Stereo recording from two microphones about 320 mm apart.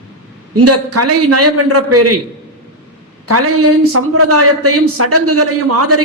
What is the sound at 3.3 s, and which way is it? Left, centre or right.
A man's voice, right.